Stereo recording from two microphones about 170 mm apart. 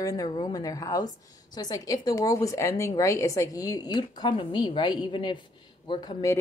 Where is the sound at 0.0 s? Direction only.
20° left (ahead or behind).